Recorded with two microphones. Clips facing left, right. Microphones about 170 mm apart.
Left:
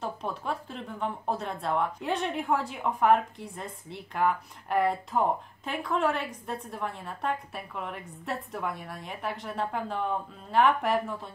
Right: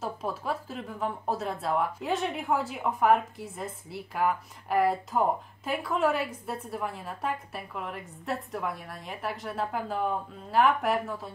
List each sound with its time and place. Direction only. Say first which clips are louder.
0.0 s speech: right 1 dB; 5° right (ahead or behind)